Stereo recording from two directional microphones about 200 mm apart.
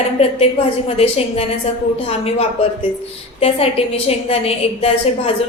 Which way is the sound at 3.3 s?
30° left (ahead or behind).